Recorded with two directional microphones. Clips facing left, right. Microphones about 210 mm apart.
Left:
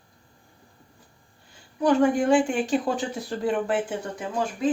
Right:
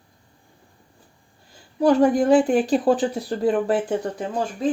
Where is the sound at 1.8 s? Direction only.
35° right (ahead or behind).